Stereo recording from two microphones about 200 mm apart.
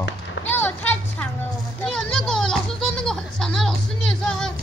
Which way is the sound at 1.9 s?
Centre (ahead or behind).